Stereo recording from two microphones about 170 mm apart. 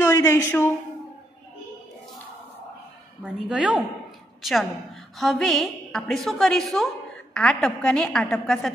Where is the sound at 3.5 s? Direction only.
5° right (ahead or behind).